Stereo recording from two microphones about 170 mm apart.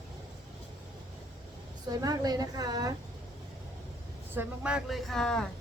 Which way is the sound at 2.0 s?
20° right (ahead or behind).